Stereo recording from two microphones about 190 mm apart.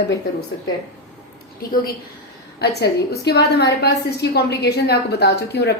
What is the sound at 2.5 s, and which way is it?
A woman's voice, 60° left (ahead or behind).